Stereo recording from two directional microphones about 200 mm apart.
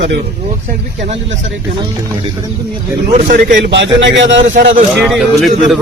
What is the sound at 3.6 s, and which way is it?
Speech, 65° right (ahead or behind).